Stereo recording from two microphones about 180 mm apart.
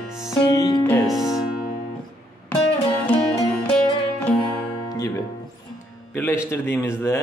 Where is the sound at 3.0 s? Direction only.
5° left (ahead or behind).